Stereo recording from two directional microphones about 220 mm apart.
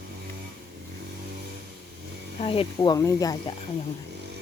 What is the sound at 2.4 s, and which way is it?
Speech, 25° left (ahead or behind).